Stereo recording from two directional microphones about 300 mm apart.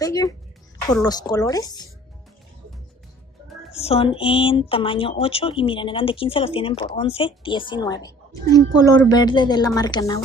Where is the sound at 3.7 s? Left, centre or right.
Centre.